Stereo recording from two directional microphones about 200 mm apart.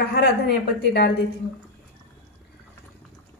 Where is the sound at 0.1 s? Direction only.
55° left (ahead or behind).